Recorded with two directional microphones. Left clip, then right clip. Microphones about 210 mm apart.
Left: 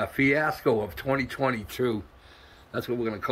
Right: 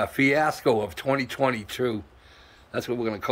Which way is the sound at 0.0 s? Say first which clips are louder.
Right 2 dB; 15° right (ahead or behind).